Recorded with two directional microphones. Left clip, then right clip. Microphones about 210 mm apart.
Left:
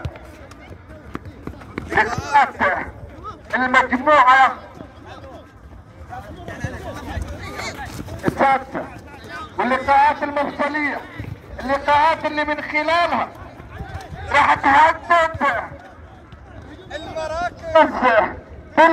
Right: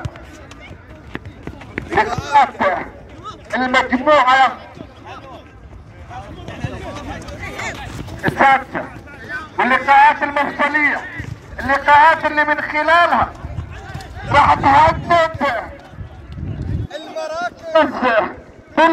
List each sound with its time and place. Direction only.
1.1 s run: 55° left (ahead or behind)
1.9 s a man's voice: 40° right (ahead or behind)
6.5 s a sound: 25° left (ahead or behind)
8.4 s a man's voice: 25° right (ahead or behind)
14.2 s a man's voice: 40° right (ahead or behind)
16.9 s a sound: 50° right (ahead or behind)
18.8 s speech: 55° right (ahead or behind)